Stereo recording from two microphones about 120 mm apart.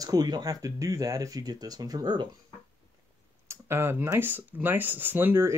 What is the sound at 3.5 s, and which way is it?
Speech, 20° right (ahead or behind).